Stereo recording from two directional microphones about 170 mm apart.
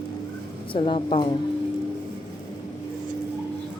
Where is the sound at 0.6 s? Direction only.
30° left (ahead or behind).